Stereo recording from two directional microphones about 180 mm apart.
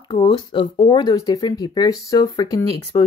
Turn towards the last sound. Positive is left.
turn(degrees=20)  # may be behind; listen again after turning